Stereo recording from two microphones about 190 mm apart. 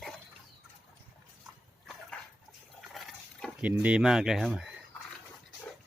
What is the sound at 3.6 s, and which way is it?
Speech, 10° right (ahead or behind).